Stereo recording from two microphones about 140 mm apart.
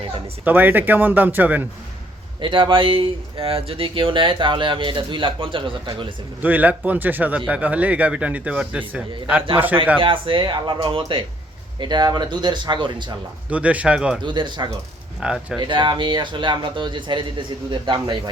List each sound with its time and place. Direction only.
0.4 s speech: 15° right (ahead or behind)
2.4 s speech: 35° right (ahead or behind)
6.4 s speech: 10° right (ahead or behind)
10.0 s speech: 35° right (ahead or behind)
13.5 s speech: 10° right (ahead or behind)
14.2 s speech: 35° right (ahead or behind)
15.2 s speech: 5° right (ahead or behind)
15.5 s speech: 35° right (ahead or behind)